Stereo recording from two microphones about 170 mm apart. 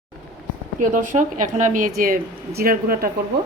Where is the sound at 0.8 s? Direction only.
50° right (ahead or behind).